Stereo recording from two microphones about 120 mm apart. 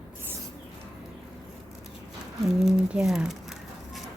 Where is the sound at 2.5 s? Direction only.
5° right (ahead or behind).